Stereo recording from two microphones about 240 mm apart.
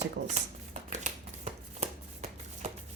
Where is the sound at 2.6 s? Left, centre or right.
Right.